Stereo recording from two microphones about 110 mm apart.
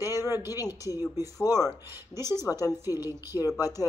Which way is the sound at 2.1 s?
25° right (ahead or behind).